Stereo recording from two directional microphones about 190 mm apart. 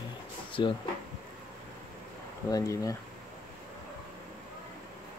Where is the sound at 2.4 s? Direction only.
15° left (ahead or behind).